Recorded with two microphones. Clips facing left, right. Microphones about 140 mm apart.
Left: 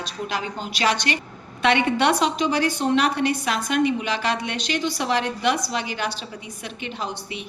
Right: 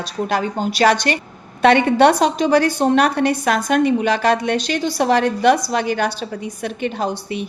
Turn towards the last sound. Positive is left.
turn(degrees=-45)  # may be behind; listen again after turning